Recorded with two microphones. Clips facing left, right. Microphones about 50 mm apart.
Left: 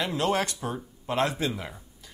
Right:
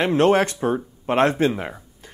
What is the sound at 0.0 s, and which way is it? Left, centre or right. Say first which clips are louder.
Speech: right 9 dB; right.